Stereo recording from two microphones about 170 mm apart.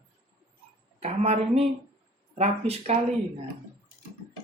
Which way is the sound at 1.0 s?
40° right (ahead or behind).